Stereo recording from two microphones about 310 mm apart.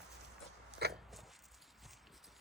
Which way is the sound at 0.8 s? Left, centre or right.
Right.